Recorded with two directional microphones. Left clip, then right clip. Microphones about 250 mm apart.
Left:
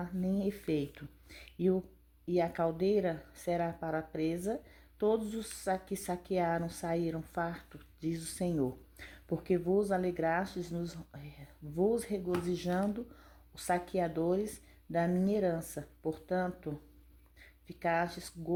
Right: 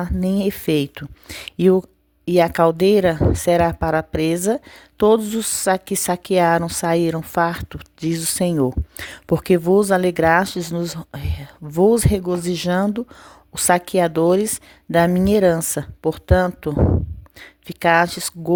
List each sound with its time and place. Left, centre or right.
0.0 s a woman's voice: right